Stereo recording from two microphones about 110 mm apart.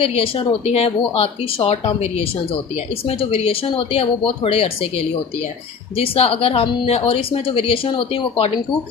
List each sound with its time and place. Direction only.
0.0 s speech: 60° left (ahead or behind)